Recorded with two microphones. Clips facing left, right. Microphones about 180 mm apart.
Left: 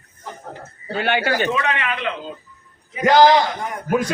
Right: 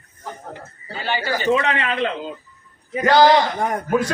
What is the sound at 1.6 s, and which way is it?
Speech, 35° right (ahead or behind).